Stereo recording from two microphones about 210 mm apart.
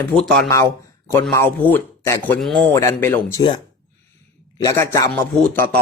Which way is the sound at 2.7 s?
15° left (ahead or behind).